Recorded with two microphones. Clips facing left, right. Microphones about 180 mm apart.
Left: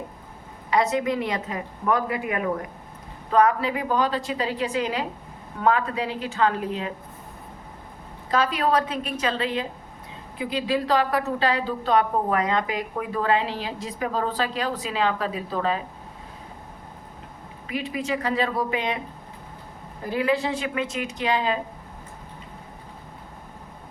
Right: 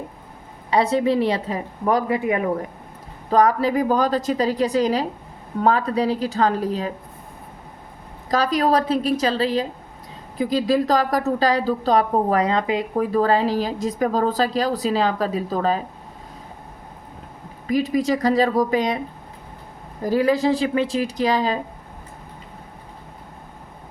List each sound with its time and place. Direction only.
0.7 s speech: 30° right (ahead or behind)
3.2 s speech: 35° right (ahead or behind)
8.3 s speech: 40° right (ahead or behind)
17.7 s speech: 40° right (ahead or behind)
20.1 s speech: 40° right (ahead or behind)